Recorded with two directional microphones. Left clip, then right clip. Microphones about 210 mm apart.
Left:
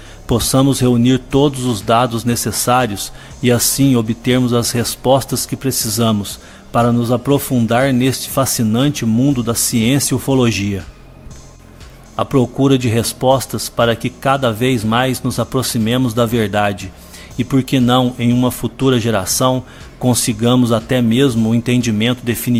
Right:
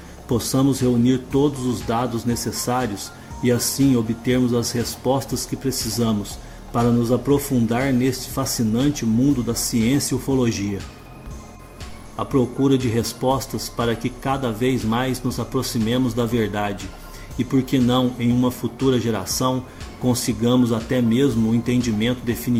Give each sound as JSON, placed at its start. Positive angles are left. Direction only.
{"t": 0.3, "sound": "speech", "side_deg": 50}
{"t": 12.1, "sound": "speech", "side_deg": 50}